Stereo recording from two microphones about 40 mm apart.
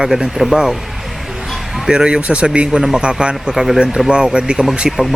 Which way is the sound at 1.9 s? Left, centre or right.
Right.